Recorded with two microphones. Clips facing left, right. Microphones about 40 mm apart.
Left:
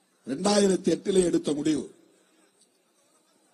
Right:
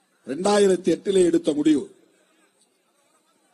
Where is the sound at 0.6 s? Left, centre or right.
Centre.